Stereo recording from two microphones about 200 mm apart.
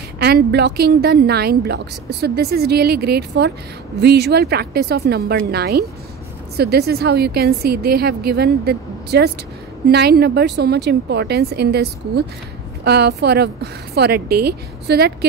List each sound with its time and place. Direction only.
0.2 s a woman's voice: 55° right (ahead or behind)